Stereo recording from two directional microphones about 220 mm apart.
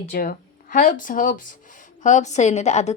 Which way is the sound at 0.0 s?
40° left (ahead or behind).